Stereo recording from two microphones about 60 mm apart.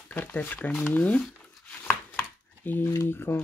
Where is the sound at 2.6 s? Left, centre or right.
Left.